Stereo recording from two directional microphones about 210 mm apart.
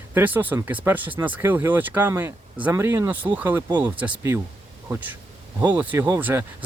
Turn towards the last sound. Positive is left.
turn(degrees=-10)  # may be behind; listen again after turning